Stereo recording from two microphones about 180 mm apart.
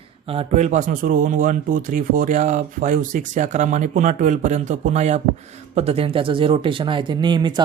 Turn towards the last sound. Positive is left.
turn(degrees=-25)  # may be behind; listen again after turning